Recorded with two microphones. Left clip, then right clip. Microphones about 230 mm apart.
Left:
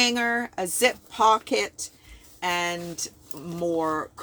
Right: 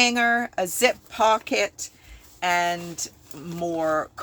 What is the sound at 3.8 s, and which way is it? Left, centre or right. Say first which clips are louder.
Speech: right 4 dB; left.